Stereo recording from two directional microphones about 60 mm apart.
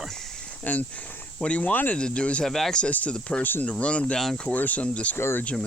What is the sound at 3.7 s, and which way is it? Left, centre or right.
Speech, centre.